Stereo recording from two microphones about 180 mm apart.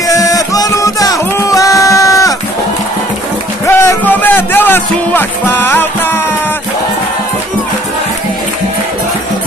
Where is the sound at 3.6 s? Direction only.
10° left (ahead or behind).